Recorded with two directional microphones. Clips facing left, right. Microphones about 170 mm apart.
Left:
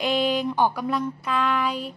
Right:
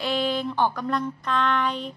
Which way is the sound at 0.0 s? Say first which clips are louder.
Left 2 dB; 15° left (ahead or behind).